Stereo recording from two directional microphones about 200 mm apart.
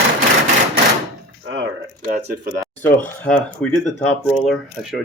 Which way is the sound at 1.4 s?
65° right (ahead or behind).